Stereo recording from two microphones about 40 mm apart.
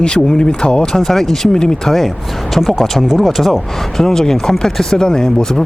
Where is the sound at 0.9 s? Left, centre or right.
Centre.